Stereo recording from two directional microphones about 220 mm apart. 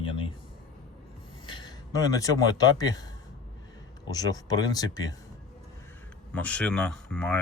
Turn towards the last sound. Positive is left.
turn(degrees=5)  # may be behind; listen again after turning